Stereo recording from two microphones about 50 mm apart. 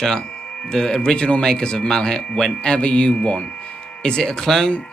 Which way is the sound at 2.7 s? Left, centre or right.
Left.